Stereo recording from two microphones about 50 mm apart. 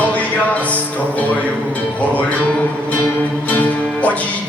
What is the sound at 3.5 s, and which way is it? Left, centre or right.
Music, left.